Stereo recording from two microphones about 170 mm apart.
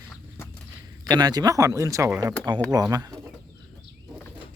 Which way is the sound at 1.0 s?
25° right (ahead or behind).